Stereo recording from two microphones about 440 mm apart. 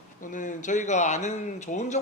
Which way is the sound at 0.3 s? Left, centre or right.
Centre.